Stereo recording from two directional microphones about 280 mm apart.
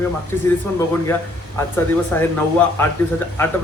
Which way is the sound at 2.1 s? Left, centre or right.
Centre.